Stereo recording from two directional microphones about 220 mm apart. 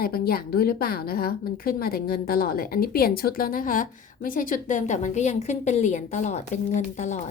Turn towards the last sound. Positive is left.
turn(degrees=30)  # may be behind; listen again after turning